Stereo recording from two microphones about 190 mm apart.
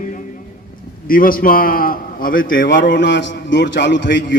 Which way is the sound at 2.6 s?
70° left (ahead or behind).